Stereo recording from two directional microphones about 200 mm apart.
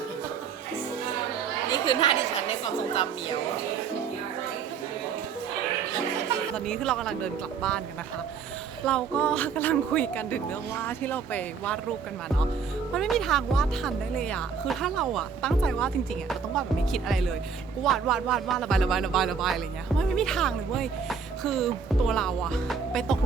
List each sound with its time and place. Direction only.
1.7 s chatter: 25° left (ahead or behind)
2.9 s speech: 25° left (ahead or behind)
6.5 s speech: 5° left (ahead or behind)
8.9 s a woman's voice: 5° left (ahead or behind)
12.9 s speech: centre (ahead or behind)